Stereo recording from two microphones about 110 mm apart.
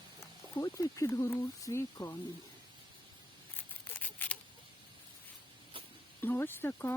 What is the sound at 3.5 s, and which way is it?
Scissors, 15° left (ahead or behind).